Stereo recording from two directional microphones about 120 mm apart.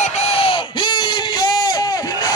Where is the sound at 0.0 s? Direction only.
65° left (ahead or behind).